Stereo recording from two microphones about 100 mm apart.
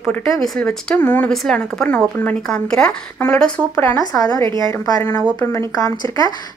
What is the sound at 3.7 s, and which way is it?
Speech, 25° left (ahead or behind).